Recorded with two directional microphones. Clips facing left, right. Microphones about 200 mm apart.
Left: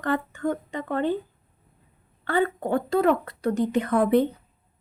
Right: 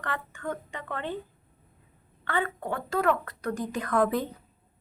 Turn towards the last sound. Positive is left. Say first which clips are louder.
# left 6 dB
turn(degrees=25)  # may be behind; listen again after turning